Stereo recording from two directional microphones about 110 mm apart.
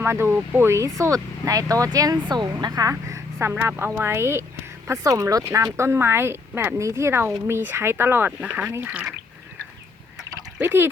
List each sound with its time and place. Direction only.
0.0 s speech: 25° right (ahead or behind)
2.9 s speech: 25° right (ahead or behind)
10.6 s speech: 20° right (ahead or behind)